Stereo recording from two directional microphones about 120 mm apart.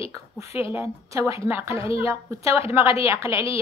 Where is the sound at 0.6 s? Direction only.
25° right (ahead or behind).